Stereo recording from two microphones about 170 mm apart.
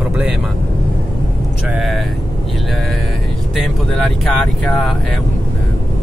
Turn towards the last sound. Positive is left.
turn(degrees=0)  # may be behind; listen again after turning